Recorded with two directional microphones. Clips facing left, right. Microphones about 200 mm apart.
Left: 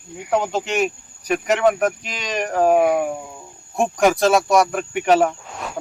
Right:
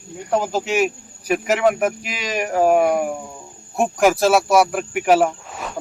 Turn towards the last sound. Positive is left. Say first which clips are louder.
# even
turn(degrees=0)  # may be behind; listen again after turning